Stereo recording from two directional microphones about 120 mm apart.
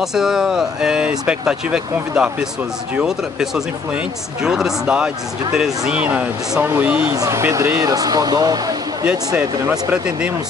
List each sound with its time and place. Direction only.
0.0 s speech: 5° right (ahead or behind)
7.1 s speech: 25° right (ahead or behind)
9.0 s speech: 10° right (ahead or behind)